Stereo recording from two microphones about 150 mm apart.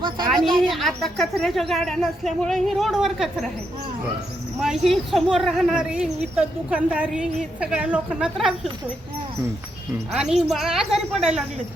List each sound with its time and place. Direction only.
0.3 s speech: centre (ahead or behind)
4.6 s speech: centre (ahead or behind)
10.2 s speech: 5° right (ahead or behind)